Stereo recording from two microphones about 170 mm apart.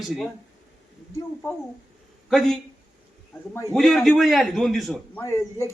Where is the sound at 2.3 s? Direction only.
Centre (ahead or behind).